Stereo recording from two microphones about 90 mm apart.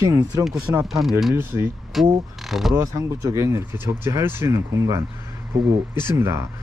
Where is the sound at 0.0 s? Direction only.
40° right (ahead or behind).